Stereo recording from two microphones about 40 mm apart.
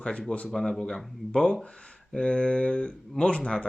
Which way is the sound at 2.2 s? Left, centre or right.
Left.